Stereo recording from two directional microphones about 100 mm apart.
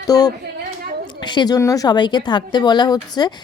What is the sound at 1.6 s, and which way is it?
Speech, 35° left (ahead or behind).